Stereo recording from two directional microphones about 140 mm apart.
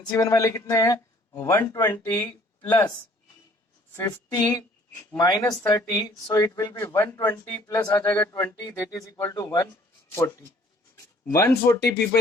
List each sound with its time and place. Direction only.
0.2 s speech: 25° left (ahead or behind)
3.9 s speech: 25° left (ahead or behind)